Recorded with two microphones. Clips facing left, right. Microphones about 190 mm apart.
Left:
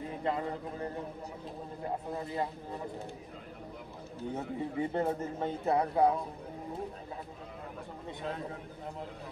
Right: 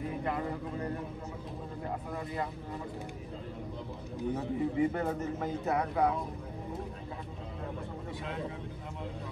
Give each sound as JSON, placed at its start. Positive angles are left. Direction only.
{"t": 0.2, "sound": "speech", "side_deg": 25}
{"t": 2.0, "sound": "speech", "side_deg": 30}
{"t": 4.4, "sound": "a man's voice", "side_deg": 30}